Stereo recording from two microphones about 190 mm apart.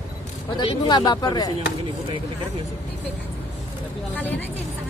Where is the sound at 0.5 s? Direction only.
25° left (ahead or behind).